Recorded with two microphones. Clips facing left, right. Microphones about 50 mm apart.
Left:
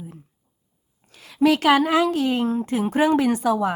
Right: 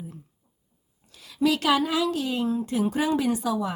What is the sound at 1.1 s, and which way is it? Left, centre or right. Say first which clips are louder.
A woman's voice: left 5 dB; left.